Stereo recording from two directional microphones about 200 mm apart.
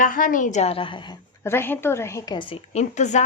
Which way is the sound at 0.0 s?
40° left (ahead or behind).